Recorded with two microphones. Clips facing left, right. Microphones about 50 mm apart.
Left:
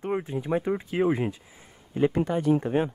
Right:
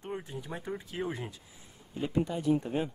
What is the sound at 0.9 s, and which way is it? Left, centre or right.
Speech, left.